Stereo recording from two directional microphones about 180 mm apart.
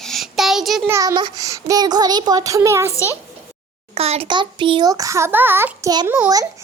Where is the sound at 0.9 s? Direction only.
15° right (ahead or behind).